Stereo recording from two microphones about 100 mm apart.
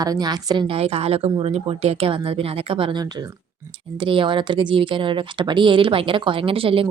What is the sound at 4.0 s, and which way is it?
Speech, 60° right (ahead or behind).